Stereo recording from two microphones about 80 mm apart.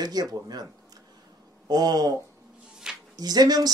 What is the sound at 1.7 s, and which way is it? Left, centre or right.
Speech, right.